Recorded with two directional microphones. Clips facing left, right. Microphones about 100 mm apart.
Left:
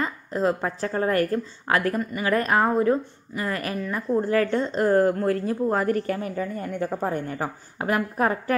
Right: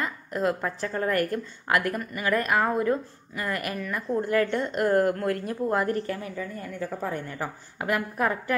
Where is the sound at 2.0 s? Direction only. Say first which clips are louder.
Left 3 dB; 20° left (ahead or behind).